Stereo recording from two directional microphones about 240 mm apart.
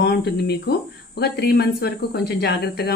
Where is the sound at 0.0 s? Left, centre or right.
Left.